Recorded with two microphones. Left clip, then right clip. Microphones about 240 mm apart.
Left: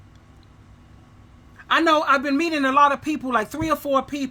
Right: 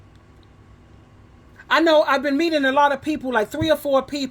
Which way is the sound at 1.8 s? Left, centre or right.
Centre.